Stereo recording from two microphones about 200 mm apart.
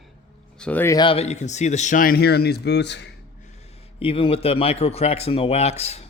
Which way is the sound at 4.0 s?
30° left (ahead or behind).